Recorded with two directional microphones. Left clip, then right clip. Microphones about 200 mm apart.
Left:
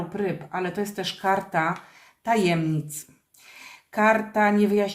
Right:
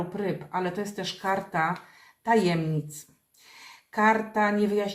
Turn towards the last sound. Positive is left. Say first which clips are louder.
# left 4 dB
turn(degrees=35)  # may be behind; listen again after turning